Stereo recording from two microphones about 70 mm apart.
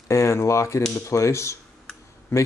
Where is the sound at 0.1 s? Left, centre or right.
Left.